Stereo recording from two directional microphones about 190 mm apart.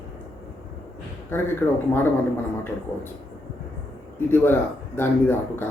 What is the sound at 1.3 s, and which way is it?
Speech, 10° left (ahead or behind).